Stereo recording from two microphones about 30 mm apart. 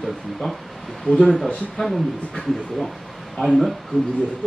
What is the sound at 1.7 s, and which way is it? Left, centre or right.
Speech, centre.